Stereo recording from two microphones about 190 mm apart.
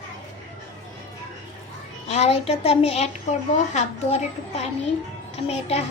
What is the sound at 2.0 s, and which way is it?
A child's voice, 35° left (ahead or behind).